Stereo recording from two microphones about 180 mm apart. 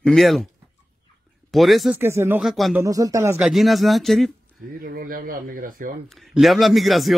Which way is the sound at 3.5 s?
Centre (ahead or behind).